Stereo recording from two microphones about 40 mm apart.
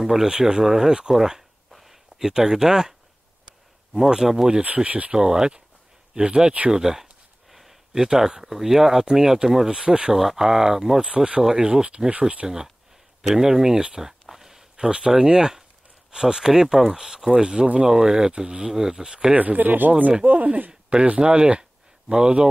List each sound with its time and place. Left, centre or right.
0.0 s speech: centre
0.3 s speech: centre
1.7 s a sound: centre
3.9 s speech: centre
4.8 s speech: right
5.1 s speech: centre
6.7 s speech: centre
10.1 s speech: centre; by 12.4 s right
12.4 s speech: centre
14.3 s a sound: centre
16.1 s speech: centre
19.3 s speech: right
20.9 s speech: right